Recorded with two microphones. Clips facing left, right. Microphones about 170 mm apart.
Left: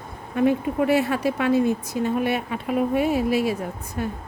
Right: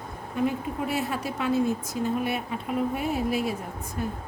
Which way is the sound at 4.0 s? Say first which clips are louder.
Left 3 dB; 75° left (ahead or behind).